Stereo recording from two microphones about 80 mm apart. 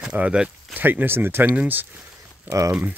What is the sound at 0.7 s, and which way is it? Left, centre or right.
Speech, right.